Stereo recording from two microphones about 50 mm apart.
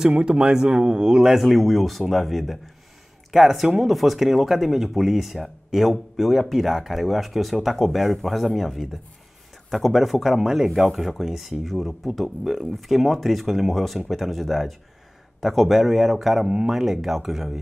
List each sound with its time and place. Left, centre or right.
0.0 s speech: centre
1.3 s speech: centre